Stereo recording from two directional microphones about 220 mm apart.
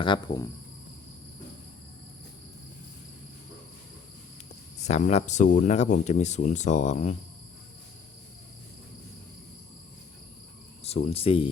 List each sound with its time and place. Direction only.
0.0 s speech: 20° left (ahead or behind)
4.9 s speech: 30° left (ahead or behind)
10.8 s speech: 25° left (ahead or behind)